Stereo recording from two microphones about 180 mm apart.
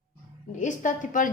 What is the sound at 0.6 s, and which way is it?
Speech, 45° left (ahead or behind).